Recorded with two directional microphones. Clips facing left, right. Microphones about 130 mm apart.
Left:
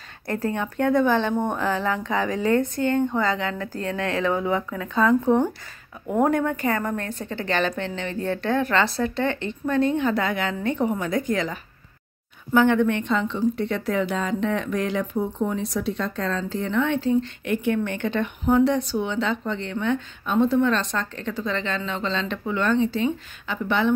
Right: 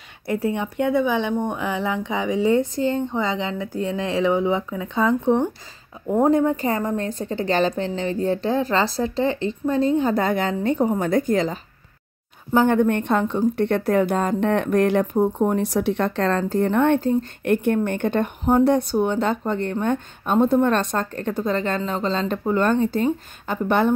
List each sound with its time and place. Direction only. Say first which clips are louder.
0.3 s speech: right 3 dB; 10° right (ahead or behind)
7.2 s a woman's voice: right 4 dB; 35° right (ahead or behind)
11.3 s a woman's voice: right 5 dB; 35° right (ahead or behind)
12.5 s a woman's voice: right 1 dB; 45° right (ahead or behind); by 16.4 s 65° right (ahead or behind)
16.4 s speech: right 5 dB; 50° right (ahead or behind)